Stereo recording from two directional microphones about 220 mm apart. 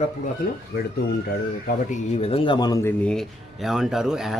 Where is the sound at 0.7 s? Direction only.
45° left (ahead or behind); by 4.3 s centre (ahead or behind).